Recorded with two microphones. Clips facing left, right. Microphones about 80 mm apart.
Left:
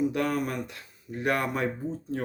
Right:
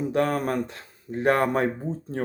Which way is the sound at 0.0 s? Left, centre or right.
Right.